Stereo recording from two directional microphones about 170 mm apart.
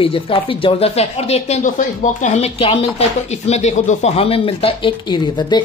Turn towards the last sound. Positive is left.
turn(degrees=25)  # may be behind; listen again after turning